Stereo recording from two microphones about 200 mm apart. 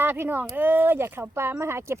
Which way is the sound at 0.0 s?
10° right (ahead or behind).